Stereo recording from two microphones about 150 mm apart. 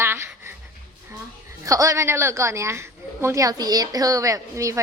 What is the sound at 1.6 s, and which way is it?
A woman's voice, 20° right (ahead or behind).